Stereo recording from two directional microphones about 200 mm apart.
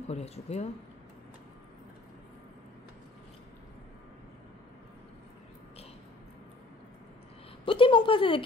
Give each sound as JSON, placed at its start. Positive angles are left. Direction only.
{"t": 0.1, "sound": "speech", "side_deg": 35}
{"t": 7.6, "sound": "speech", "side_deg": 25}